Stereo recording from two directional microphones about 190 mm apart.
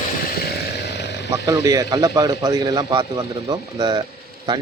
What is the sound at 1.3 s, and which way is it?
Speech, 15° right (ahead or behind).